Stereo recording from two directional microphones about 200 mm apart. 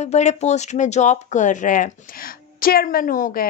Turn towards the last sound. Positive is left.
turn(degrees=40)  # may be behind; listen again after turning